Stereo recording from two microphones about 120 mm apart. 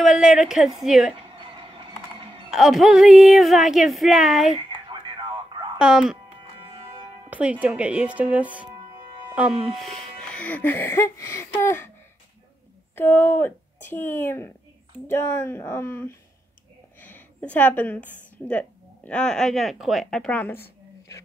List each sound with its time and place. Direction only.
0.0 s a woman's voice: 5° right (ahead or behind)
2.5 s speech: 5° right (ahead or behind)
4.6 s a sound: 40° right (ahead or behind)
5.8 s speech: 5° right (ahead or behind)
6.6 s music: 45° right (ahead or behind)
7.2 s speech: 10° right (ahead or behind)
8.6 s music: 35° right (ahead or behind)
9.3 s speech: 5° right (ahead or behind)
10.2 s speech: 10° left (ahead or behind)
12.9 s speech: 20° left (ahead or behind)
17.0 s a sound: 15° left (ahead or behind)
18.5 s speech: 10° left (ahead or behind)